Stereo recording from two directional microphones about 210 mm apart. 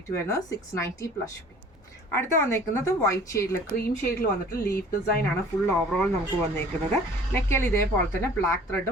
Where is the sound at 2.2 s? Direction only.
10° left (ahead or behind).